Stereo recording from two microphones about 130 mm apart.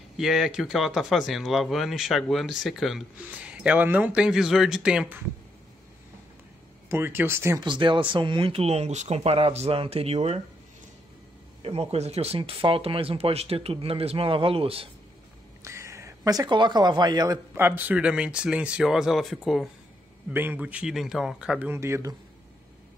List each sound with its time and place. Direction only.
0.2 s speech: 5° right (ahead or behind)
6.9 s speech: 15° right (ahead or behind)
7.6 s speech: 40° right (ahead or behind)
11.6 s speech: 50° right (ahead or behind)
15.6 s speech: 20° right (ahead or behind)
17.6 s speech: 15° right (ahead or behind)
20.3 s speech: 10° right (ahead or behind)